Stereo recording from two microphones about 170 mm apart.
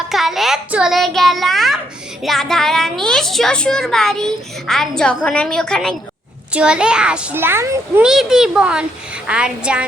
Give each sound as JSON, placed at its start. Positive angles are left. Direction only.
{"t": 0.1, "sound": "child singing", "side_deg": 0}
{"t": 2.2, "sound": "a woman's voice", "side_deg": 0}
{"t": 8.0, "sound": "a woman's voice", "side_deg": -5}